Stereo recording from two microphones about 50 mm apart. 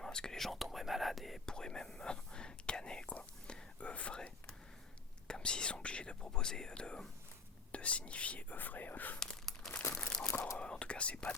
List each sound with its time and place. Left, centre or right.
0.0 s whispering: centre
1.5 s whispering: centre
5.3 s whispering: centre
7.7 s speech: left
9.1 s crumpling: centre
10.0 s crunch: centre
10.6 s speech: left